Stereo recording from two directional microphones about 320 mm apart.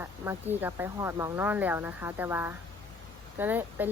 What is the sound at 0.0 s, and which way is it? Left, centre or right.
A woman's voice, centre.